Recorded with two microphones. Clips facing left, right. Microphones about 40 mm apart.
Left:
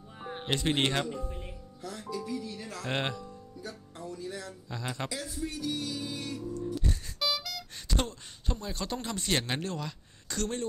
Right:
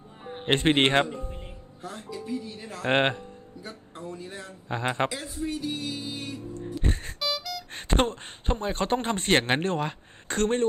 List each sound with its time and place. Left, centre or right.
0.5 s a man's voice: right
7.2 s music: centre
7.7 s a man's voice: right